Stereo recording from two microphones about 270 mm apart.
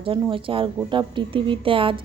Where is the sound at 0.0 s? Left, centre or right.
Centre.